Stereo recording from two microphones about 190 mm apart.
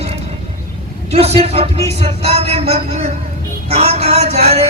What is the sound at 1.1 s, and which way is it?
A man's voice, 35° right (ahead or behind).